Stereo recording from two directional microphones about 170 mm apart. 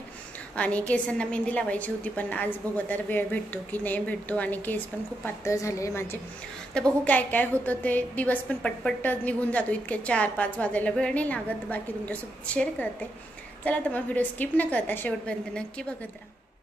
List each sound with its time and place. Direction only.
0.6 s a woman's voice: 10° left (ahead or behind)
6.7 s a woman's voice: 5° left (ahead or behind)